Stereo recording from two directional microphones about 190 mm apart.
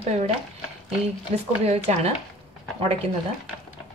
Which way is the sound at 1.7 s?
35° right (ahead or behind).